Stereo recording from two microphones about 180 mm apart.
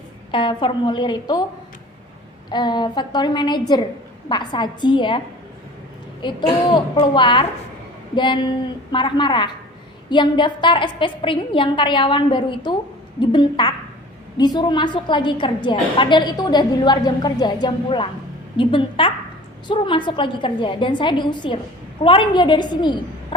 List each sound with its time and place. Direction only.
0.3 s a woman's voice: 30° left (ahead or behind)
2.5 s a woman's voice: 25° left (ahead or behind)
6.2 s a woman's voice: 25° left (ahead or behind)